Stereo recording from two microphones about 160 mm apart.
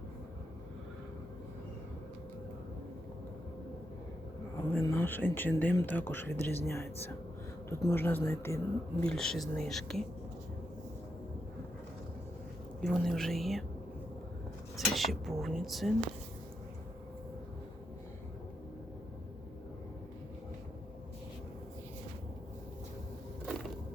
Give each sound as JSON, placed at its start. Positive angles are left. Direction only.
{"t": 4.5, "sound": "speech", "side_deg": 15}
{"t": 9.0, "sound": "speech", "side_deg": 5}
{"t": 12.8, "sound": "speech", "side_deg": 0}
{"t": 14.8, "sound": "speech", "side_deg": 0}